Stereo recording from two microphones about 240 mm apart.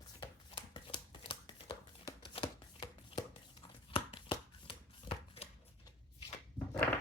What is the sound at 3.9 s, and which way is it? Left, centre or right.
Shuffling cards, left.